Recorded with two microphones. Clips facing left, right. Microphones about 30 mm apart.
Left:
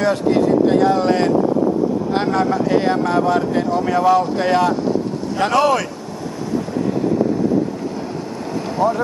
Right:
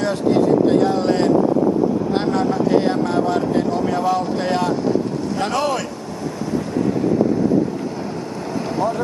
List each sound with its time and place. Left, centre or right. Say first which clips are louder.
0.0 s speech: left 1 dB; centre
8.7 s speech: left 4 dB; centre